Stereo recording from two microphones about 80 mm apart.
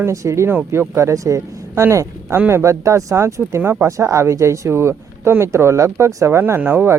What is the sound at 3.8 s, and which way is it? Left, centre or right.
Speech, right.